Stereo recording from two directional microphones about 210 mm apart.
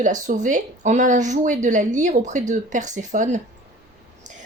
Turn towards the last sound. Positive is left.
turn(degrees=-35)  # may be behind; listen again after turning